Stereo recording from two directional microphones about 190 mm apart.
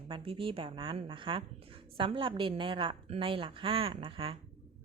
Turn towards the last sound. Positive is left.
turn(degrees=-25)  # may be behind; listen again after turning